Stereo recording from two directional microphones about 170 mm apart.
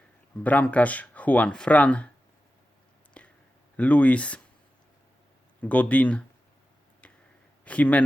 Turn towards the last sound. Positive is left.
turn(degrees=10)  # may be behind; listen again after turning